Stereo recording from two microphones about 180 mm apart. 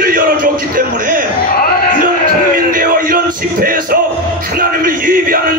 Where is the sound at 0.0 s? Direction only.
50° right (ahead or behind).